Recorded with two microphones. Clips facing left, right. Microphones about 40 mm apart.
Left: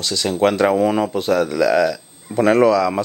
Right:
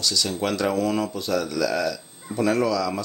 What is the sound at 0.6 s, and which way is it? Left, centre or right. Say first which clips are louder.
Speech: left 7 dB; left.